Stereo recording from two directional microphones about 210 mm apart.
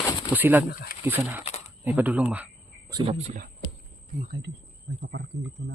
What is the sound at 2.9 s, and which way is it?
Speech, 30° right (ahead or behind).